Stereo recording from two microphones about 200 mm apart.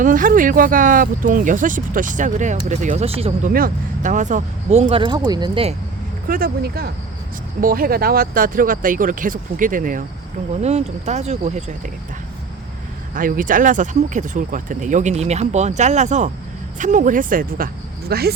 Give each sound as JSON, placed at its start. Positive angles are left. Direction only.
{"t": 0.0, "sound": "speech", "side_deg": -40}
{"t": 3.5, "sound": "speech", "side_deg": -40}
{"t": 6.2, "sound": "speech", "side_deg": -45}
{"t": 13.1, "sound": "speech", "side_deg": -45}